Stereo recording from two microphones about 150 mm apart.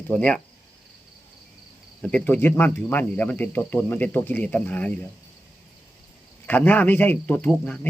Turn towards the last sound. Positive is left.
turn(degrees=10)  # may be behind; listen again after turning